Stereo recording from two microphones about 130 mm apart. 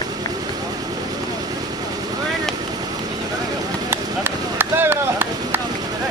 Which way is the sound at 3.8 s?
15° right (ahead or behind).